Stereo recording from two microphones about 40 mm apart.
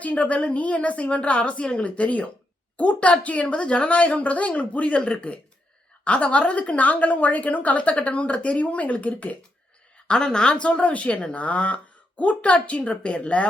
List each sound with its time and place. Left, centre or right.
0.0 s a woman's voice: left
10.3 s a woman's voice: left